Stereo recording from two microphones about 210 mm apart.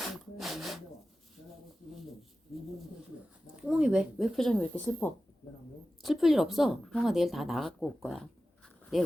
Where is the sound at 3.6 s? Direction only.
5° right (ahead or behind).